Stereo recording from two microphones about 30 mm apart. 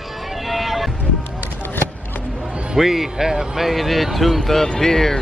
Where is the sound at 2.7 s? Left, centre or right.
Centre.